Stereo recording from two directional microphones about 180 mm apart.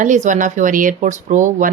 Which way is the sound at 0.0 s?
45° right (ahead or behind).